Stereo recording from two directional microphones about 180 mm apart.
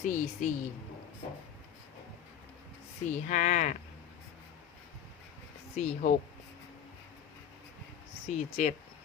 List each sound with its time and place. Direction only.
0.0 s speech: 45° left (ahead or behind)
3.1 s speech: 45° left (ahead or behind)
5.7 s speech: 40° left (ahead or behind)
8.3 s speech: 40° left (ahead or behind)